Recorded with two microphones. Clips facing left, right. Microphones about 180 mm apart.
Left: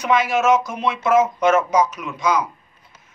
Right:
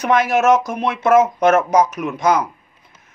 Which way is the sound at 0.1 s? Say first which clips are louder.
Right 2 dB; 45° right (ahead or behind).